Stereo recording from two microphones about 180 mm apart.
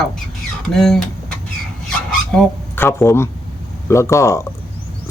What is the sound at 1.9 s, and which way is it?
Filing, 5° left (ahead or behind).